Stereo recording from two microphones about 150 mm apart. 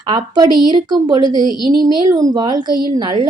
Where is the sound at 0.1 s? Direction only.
30° right (ahead or behind).